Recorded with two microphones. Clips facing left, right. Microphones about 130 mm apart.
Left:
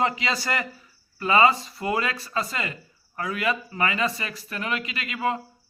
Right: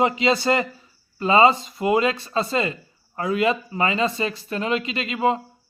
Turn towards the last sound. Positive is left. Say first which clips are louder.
# right 5 dB
turn(degrees=-25)  # may be behind; listen again after turning